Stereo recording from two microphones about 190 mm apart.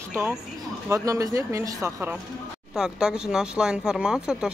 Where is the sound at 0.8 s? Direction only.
15° right (ahead or behind).